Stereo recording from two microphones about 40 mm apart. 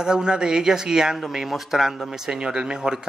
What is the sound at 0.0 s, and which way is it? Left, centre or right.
Speech, centre.